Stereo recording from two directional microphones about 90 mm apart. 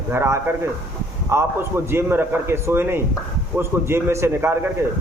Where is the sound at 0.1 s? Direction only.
25° right (ahead or behind).